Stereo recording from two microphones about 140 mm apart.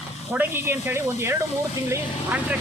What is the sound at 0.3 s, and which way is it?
Speech, 15° right (ahead or behind).